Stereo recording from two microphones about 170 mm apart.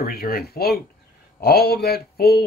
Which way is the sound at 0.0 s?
60° left (ahead or behind).